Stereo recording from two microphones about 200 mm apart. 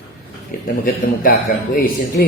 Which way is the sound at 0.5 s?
50° left (ahead or behind).